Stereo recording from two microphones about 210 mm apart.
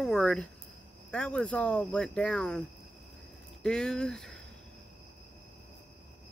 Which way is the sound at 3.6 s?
5° left (ahead or behind).